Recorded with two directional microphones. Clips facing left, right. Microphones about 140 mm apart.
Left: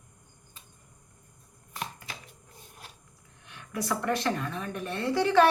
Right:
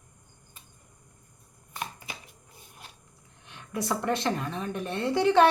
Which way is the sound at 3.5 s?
25° right (ahead or behind).